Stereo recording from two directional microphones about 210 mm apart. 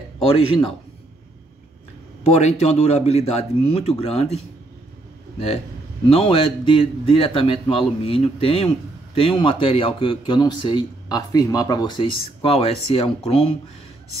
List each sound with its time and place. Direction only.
0.2 s speech: 25° left (ahead or behind)
2.2 s speech: 30° left (ahead or behind)
6.0 s speech: 25° left (ahead or behind)